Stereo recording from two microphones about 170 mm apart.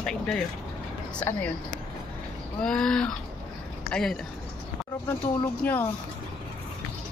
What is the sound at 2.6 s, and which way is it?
Speech, 5° left (ahead or behind).